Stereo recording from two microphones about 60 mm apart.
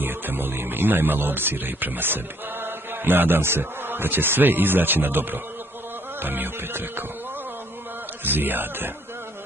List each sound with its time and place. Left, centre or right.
0.0 s speech: right
8.2 s speech: right